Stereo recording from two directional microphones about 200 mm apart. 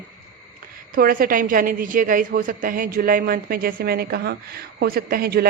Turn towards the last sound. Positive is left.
turn(degrees=-50)  # may be behind; listen again after turning